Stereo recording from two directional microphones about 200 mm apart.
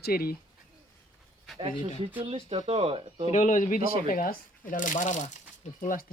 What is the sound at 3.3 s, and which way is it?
Speech, 40° left (ahead or behind).